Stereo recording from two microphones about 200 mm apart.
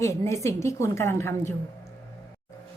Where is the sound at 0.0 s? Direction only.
15° left (ahead or behind).